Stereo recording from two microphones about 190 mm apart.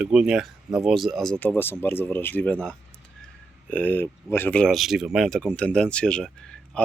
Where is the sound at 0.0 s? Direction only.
5° right (ahead or behind).